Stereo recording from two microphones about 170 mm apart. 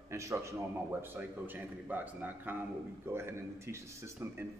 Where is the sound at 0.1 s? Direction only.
15° right (ahead or behind).